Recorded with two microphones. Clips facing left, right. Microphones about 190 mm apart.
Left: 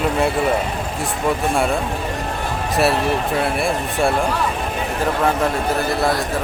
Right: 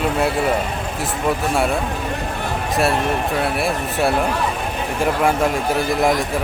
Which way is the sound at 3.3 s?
Centre (ahead or behind).